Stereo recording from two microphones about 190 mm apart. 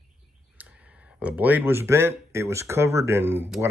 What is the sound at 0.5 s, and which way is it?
Speech, 5° right (ahead or behind).